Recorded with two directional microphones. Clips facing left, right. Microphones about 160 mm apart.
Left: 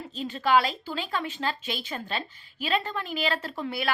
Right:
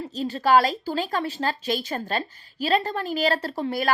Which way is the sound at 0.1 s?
40° right (ahead or behind).